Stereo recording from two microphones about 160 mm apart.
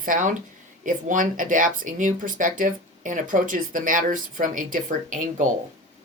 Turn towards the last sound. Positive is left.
turn(degrees=-50)  # may be behind; listen again after turning